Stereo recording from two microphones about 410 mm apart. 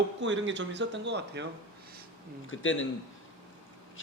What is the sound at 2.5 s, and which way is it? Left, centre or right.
Speech, left.